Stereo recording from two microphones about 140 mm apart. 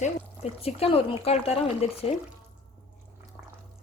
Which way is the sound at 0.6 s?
45° left (ahead or behind).